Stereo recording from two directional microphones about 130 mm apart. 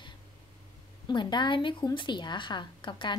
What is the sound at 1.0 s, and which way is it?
A woman's voice, 35° left (ahead or behind).